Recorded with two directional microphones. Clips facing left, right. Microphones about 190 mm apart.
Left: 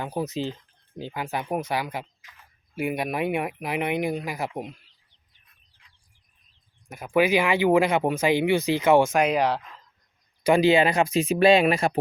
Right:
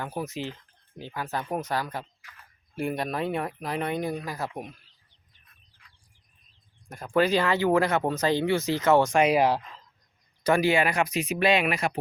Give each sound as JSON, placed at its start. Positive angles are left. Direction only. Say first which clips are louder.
{"t": 0.0, "sound": "speech", "louder": "left 4 dB", "side_deg": 20}
{"t": 6.8, "sound": "speech", "louder": "left 2 dB", "side_deg": 5}
{"t": 10.4, "sound": "speech", "louder": "left 4 dB", "side_deg": 20}